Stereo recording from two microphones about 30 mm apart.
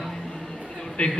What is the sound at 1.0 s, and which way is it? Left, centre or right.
Speech, left.